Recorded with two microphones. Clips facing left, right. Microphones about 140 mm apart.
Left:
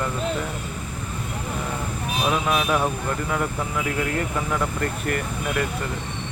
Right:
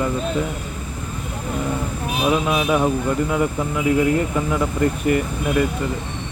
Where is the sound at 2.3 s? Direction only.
10° right (ahead or behind).